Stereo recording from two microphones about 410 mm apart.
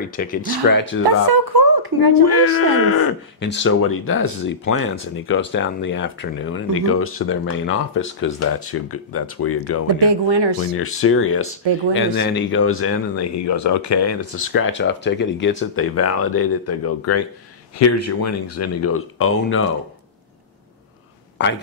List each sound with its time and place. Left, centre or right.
0.1 s speech: centre
1.5 s a sound: right
2.3 s speech: left
9.9 s speech: right
10.8 s speech: left